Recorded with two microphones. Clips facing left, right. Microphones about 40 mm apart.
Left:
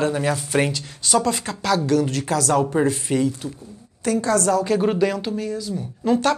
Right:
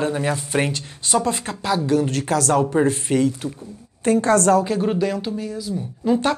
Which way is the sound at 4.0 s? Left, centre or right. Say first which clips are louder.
Right 3 dB; right.